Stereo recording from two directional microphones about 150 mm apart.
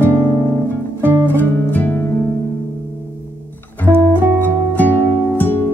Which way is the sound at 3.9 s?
15° right (ahead or behind).